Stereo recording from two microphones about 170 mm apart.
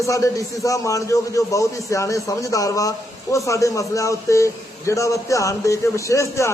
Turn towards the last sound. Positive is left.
turn(degrees=15)  # may be behind; listen again after turning